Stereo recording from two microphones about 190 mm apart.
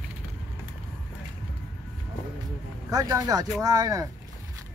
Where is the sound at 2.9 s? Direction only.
20° right (ahead or behind).